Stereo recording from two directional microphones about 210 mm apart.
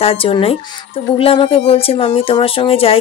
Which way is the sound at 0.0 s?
25° left (ahead or behind).